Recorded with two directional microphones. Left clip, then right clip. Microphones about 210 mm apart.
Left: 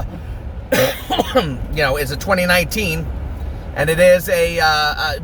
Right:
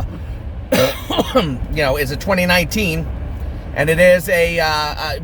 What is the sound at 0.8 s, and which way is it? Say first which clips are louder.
Speech: even; 15° right (ahead or behind).